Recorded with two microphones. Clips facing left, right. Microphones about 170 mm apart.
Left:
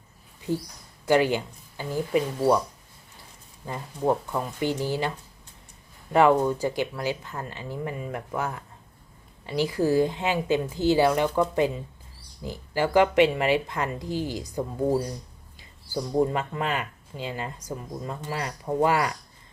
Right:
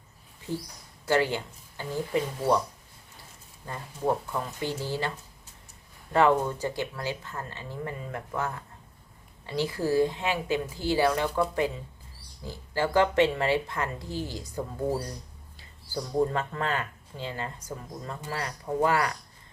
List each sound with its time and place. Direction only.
1.0 s speech: 15° left (ahead or behind)
3.7 s speech: 15° left (ahead or behind)
6.1 s a woman's voice: 15° left (ahead or behind)